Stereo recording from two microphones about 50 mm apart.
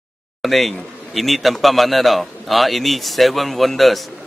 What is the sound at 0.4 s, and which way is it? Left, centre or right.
Speech, centre.